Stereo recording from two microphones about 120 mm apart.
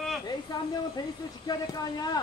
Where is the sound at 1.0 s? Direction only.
35° left (ahead or behind).